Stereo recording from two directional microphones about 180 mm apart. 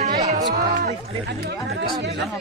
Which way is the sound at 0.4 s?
20° right (ahead or behind).